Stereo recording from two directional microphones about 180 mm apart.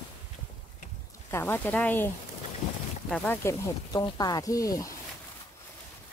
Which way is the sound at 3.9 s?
20° left (ahead or behind).